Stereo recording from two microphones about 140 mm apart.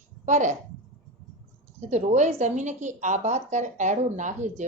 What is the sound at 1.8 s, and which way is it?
A woman's voice, 55° right (ahead or behind).